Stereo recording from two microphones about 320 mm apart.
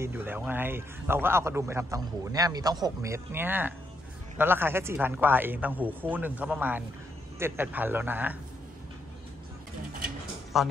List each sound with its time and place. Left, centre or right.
0.0 s a man's voice: centre
10.5 s a man's voice: centre